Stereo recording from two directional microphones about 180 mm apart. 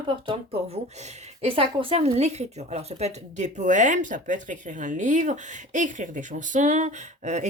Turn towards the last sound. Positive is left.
turn(degrees=-40)  # may be behind; listen again after turning